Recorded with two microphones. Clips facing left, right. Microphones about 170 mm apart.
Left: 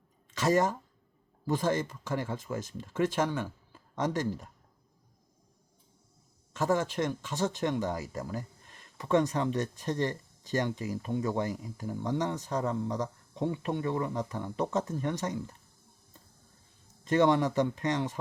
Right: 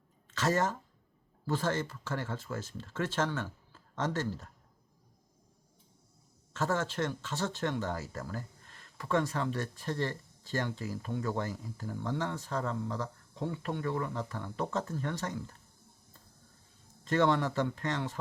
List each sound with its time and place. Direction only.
0.3 s speech: 15° left (ahead or behind)
6.5 s speech: 15° left (ahead or behind)
17.0 s speech: 15° left (ahead or behind)